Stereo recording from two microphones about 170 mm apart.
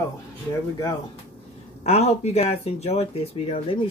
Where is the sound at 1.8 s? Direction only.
40° left (ahead or behind).